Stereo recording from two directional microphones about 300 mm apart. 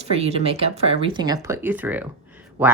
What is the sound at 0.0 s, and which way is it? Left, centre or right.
Speech, right.